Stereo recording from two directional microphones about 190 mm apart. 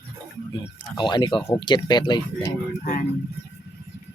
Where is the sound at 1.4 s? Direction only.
20° left (ahead or behind).